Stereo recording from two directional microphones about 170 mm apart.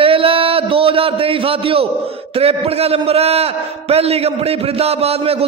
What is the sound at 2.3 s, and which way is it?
A man's voice, 35° right (ahead or behind).